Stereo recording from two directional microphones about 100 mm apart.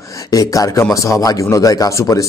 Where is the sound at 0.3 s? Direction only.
35° left (ahead or behind).